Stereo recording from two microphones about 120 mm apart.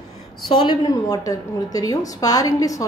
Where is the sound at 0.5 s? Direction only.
40° left (ahead or behind).